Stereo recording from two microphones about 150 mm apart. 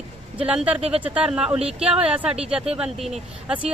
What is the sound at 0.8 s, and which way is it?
Speech, 45° right (ahead or behind).